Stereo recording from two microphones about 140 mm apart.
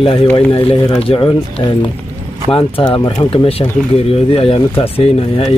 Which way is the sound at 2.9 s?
35° left (ahead or behind).